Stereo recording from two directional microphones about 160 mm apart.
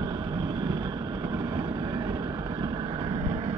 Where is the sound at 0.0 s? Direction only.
25° right (ahead or behind).